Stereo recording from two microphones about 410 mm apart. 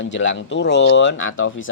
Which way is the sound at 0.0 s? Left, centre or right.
Left.